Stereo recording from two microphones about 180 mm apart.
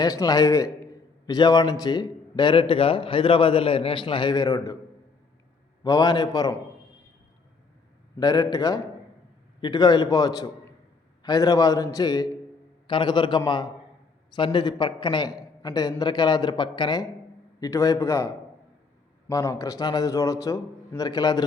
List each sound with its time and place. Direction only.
0.0 s a man's voice: 20° left (ahead or behind)
5.8 s a man's voice: 20° left (ahead or behind)
8.1 s a man's voice: 20° left (ahead or behind)
19.3 s a man's voice: 15° left (ahead or behind)